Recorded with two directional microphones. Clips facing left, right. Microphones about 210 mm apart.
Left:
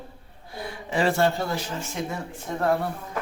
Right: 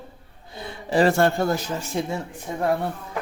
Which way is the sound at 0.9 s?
45° right (ahead or behind).